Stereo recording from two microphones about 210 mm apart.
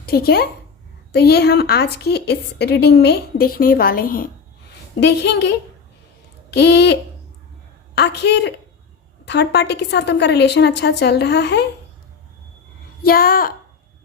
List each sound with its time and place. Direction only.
0.0 s a woman's voice: 45° left (ahead or behind)
4.9 s a woman's voice: 55° left (ahead or behind)
13.0 s a woman's voice: 45° left (ahead or behind)